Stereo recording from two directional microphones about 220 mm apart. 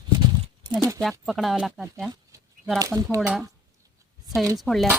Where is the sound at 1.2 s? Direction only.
Centre (ahead or behind).